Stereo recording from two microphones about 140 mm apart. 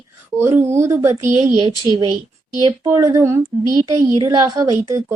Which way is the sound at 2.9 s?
20° right (ahead or behind).